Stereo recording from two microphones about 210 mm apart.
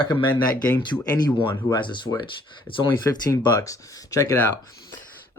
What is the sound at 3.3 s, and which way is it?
Speech, 15° left (ahead or behind).